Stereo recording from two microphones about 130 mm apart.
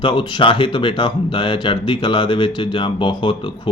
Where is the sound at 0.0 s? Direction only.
40° left (ahead or behind).